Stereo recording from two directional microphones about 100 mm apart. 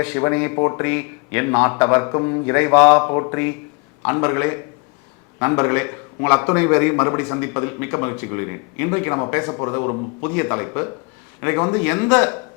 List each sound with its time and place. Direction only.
0.0 s a man's voice: 20° left (ahead or behind)